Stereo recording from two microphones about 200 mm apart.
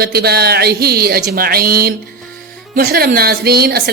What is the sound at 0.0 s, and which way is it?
A woman's voice, 50° right (ahead or behind).